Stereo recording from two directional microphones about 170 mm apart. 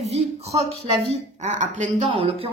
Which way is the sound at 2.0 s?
30° right (ahead or behind).